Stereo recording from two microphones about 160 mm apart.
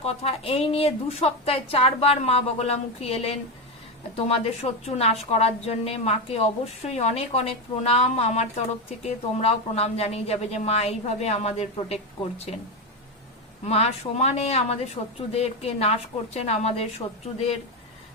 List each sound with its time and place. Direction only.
0.0 s a woman's voice: 40° left (ahead or behind)
13.7 s a woman's voice: 40° left (ahead or behind)